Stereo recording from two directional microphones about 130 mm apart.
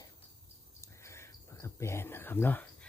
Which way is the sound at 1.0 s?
20° left (ahead or behind).